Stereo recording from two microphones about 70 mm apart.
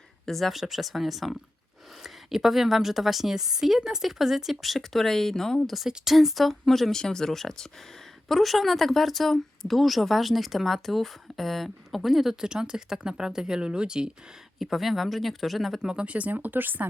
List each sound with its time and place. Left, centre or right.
0.3 s speech: centre
5.7 s speech: centre
14.6 s speech: centre
15.8 s speech: centre; by 16.8 s right